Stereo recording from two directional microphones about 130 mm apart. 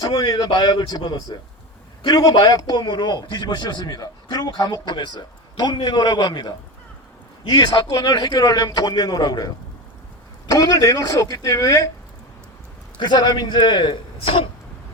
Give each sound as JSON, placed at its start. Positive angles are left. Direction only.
{"t": 0.0, "sound": "a man's voice", "side_deg": 30}
{"t": 13.0, "sound": "a man's voice", "side_deg": 35}